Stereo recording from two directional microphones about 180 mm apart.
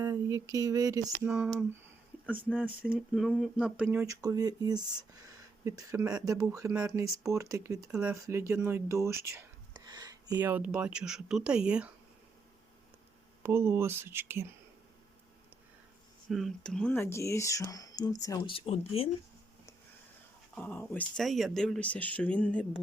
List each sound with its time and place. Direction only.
0.0 s a sound: 20° right (ahead or behind)
1.3 s speech: 5° right (ahead or behind)
2.6 s speech: 5° right (ahead or behind)
3.8 s speech: 15° right (ahead or behind)
13.4 s speech: 15° right (ahead or behind)
16.3 s speech: centre (ahead or behind); by 19.1 s 35° left (ahead or behind)
20.6 s speech: 10° left (ahead or behind)